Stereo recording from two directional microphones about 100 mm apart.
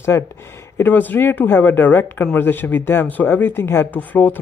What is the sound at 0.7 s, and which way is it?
Speech, 20° left (ahead or behind).